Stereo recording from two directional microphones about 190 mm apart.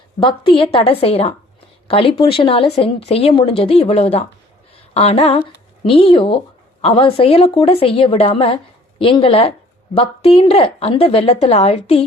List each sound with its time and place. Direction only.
0.2 s a woman's voice: 25° left (ahead or behind)